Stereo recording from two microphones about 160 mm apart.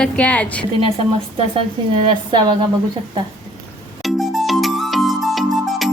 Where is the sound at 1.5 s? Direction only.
35° right (ahead or behind).